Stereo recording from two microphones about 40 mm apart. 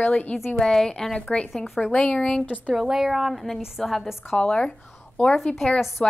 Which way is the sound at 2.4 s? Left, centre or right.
Left.